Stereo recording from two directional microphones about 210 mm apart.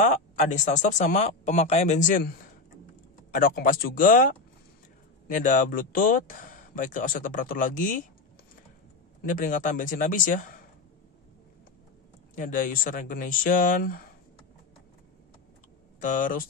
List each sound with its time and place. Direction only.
0.0 s speech: 35° left (ahead or behind)
3.3 s speech: 40° left (ahead or behind)
9.2 s speech: 40° left (ahead or behind)
12.4 s speech: 40° left (ahead or behind)
16.0 s speech: 40° left (ahead or behind)